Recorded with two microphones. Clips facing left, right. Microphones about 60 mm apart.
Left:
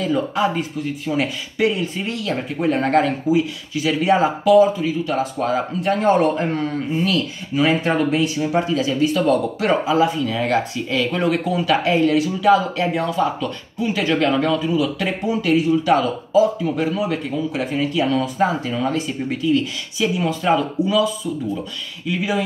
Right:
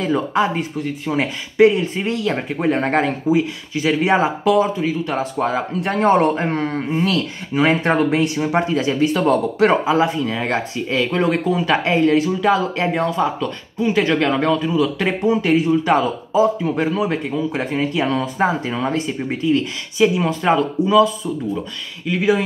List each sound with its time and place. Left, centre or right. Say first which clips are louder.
0.0 s speech: right 1 dB; right